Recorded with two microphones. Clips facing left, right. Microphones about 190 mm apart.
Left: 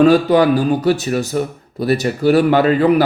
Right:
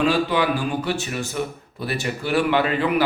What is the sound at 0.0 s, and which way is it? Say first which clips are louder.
Speech: left 9 dB; 40° left (ahead or behind).